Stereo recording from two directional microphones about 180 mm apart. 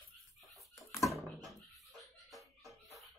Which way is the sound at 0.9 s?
15° left (ahead or behind).